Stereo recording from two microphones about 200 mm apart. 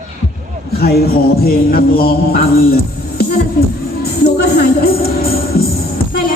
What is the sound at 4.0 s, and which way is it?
Music, 55° left (ahead or behind).